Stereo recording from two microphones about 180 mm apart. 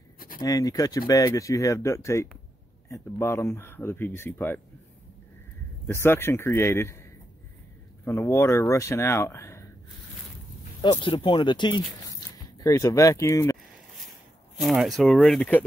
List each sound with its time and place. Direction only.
0.4 s speech: 20° left (ahead or behind)
5.9 s speech: 15° left (ahead or behind)
10.8 s speech: 25° left (ahead or behind)
14.6 s speech: centre (ahead or behind)